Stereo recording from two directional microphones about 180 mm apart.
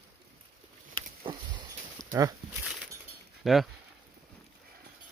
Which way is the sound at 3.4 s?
Centre (ahead or behind).